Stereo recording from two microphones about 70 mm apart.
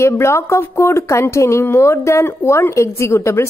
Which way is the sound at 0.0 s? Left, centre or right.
Left.